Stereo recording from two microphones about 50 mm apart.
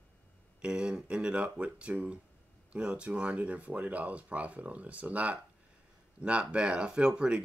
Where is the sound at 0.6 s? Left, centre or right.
Centre.